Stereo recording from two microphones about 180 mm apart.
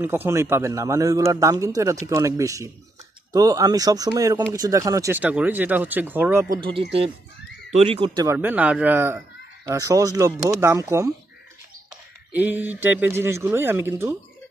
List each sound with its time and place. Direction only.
0.0 s speech: 15° right (ahead or behind)
6.6 s speech: 30° right (ahead or behind)
8.4 s speech: 10° right (ahead or behind)
12.3 s speech: 10° right (ahead or behind)